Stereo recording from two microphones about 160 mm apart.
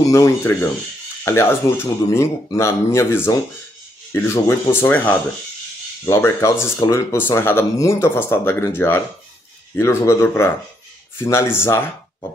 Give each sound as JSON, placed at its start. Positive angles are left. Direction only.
{"t": 0.0, "sound": "speech", "side_deg": 20}